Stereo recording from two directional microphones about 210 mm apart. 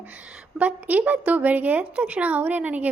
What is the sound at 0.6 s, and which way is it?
A woman's voice, 5° right (ahead or behind).